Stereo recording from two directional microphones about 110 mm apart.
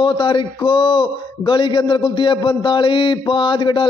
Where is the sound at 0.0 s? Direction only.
45° left (ahead or behind).